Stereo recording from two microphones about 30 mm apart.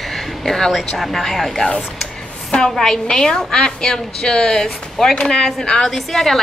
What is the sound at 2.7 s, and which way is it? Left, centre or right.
Speech, centre.